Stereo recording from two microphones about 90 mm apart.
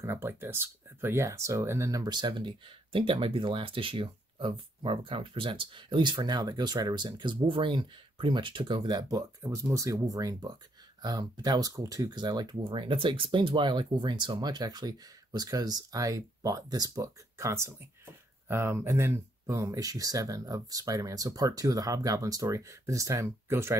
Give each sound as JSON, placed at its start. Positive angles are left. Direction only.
{"t": 0.0, "sound": "speech", "side_deg": -30}
{"t": 2.0, "sound": "speech", "side_deg": -55}
{"t": 9.4, "sound": "speech", "side_deg": -30}